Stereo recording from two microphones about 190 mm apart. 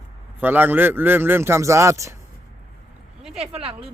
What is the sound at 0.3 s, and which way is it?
A man's voice, 10° right (ahead or behind).